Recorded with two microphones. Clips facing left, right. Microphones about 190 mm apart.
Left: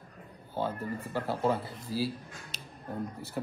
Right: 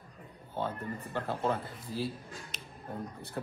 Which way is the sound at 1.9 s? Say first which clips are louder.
Left 3 dB; 35° left (ahead or behind).